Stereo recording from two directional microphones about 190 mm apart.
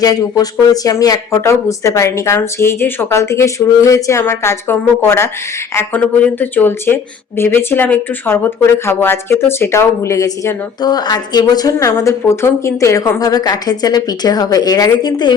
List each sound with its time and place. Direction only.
0.0 s speech: 20° left (ahead or behind)